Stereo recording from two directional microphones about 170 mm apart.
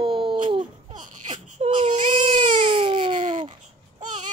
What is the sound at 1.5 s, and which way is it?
Baby cry, 45° right (ahead or behind).